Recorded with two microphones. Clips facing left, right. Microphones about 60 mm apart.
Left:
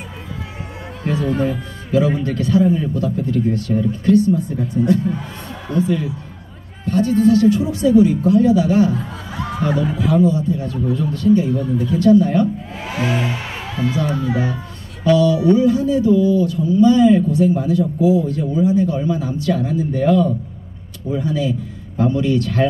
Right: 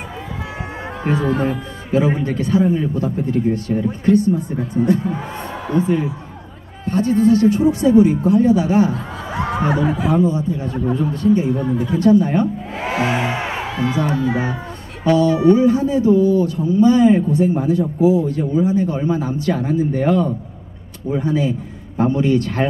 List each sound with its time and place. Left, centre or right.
1.0 s speech: right
1.3 s speech: centre
1.9 s a man's voice: right
9.3 s a sound: right
9.9 s a man's voice: right